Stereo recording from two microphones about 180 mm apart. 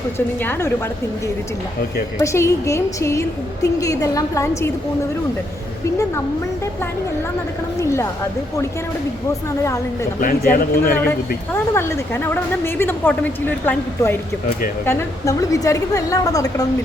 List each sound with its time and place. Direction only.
2.1 s a woman's voice: 15° left (ahead or behind)
9.6 s a woman's voice: 15° left (ahead or behind)
10.2 s a man's voice: 50° left (ahead or behind)
11.5 s a woman's voice: 15° left (ahead or behind)